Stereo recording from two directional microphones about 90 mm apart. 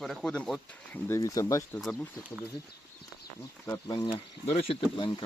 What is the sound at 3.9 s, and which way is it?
Speech, 65° left (ahead or behind).